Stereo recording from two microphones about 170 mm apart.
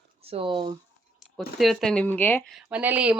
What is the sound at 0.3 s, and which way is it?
Speech, 30° right (ahead or behind).